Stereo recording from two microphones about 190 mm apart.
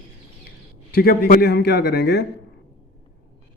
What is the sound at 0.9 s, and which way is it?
A man's voice, 55° left (ahead or behind).